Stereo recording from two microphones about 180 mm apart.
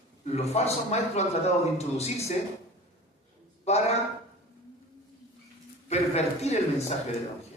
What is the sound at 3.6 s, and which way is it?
Speech, 35° left (ahead or behind).